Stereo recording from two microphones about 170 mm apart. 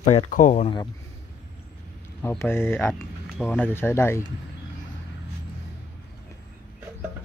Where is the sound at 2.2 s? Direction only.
15° left (ahead or behind).